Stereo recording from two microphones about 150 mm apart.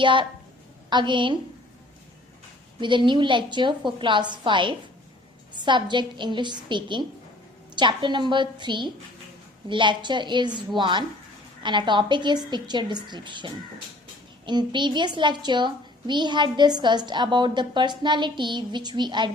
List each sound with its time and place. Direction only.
0.0 s a woman's voice: 35° right (ahead or behind)
2.8 s a woman's voice: 30° right (ahead or behind)